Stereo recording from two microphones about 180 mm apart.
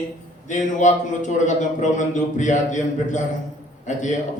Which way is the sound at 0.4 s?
40° left (ahead or behind).